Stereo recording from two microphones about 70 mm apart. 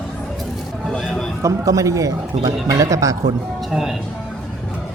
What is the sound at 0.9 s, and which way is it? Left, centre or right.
Speech, centre.